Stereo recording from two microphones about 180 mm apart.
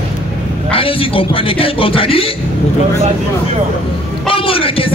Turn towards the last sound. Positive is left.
turn(degrees=30)  # may be behind; listen again after turning